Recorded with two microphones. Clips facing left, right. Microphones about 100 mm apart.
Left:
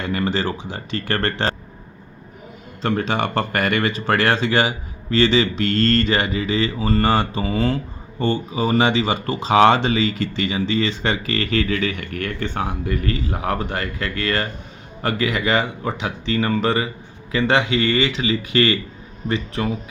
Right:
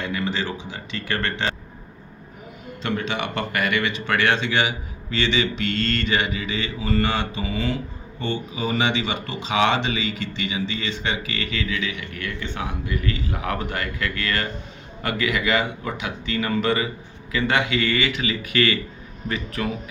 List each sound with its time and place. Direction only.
0.0 s speech: 45° left (ahead or behind)
2.8 s mantra: 40° left (ahead or behind)
8.2 s speech: 40° left (ahead or behind)
15.0 s mantra: 35° left (ahead or behind)
19.6 s speech: 30° left (ahead or behind)